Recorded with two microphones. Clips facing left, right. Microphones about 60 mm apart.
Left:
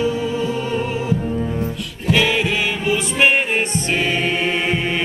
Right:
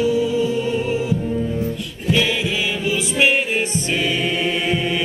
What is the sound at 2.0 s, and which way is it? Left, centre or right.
Singing, left.